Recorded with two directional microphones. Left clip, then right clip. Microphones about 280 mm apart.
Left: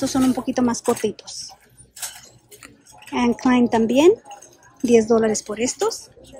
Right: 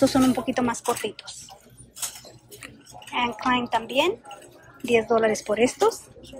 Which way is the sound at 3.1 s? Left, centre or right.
Centre.